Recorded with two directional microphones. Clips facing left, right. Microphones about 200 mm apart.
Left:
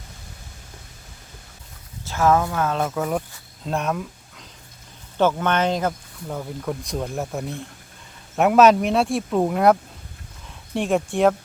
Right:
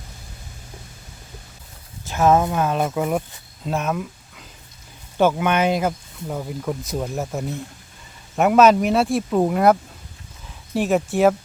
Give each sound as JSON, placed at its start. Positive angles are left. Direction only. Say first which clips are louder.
{"t": 2.0, "sound": "speech", "louder": "right 2 dB", "side_deg": -20}
{"t": 10.8, "sound": "speech", "louder": "right 2 dB", "side_deg": -5}